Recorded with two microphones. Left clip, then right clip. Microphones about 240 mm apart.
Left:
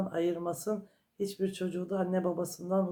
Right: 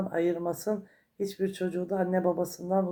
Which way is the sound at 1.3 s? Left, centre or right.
Centre.